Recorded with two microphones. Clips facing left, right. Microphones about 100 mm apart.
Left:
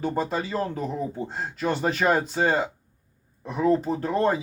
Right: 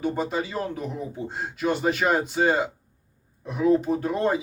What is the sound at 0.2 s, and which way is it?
Speech, 15° right (ahead or behind).